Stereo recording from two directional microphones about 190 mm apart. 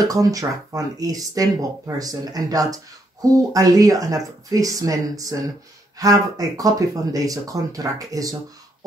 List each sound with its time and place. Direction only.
0.0 s speech: 20° right (ahead or behind)